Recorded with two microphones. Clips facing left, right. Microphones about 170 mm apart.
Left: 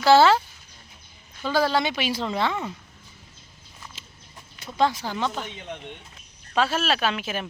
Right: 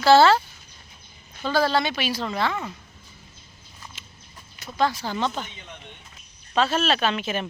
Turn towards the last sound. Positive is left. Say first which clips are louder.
# right 2 dB
turn(degrees=5)  # may be behind; listen again after turning